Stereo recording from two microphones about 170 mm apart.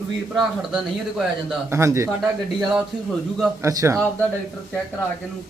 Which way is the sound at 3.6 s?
20° right (ahead or behind).